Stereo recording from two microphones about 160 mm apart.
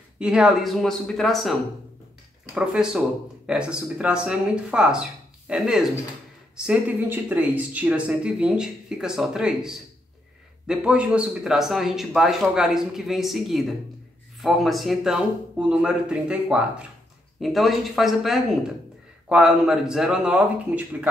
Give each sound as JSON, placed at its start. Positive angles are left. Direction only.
{"t": 0.2, "sound": "a man's voice", "side_deg": -5}